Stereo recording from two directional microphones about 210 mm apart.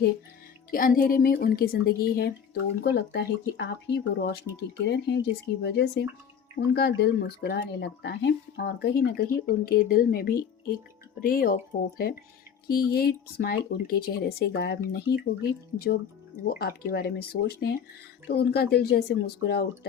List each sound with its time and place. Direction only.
0.7 s speech: 45° left (ahead or behind)
16.4 s speech: 45° left (ahead or behind)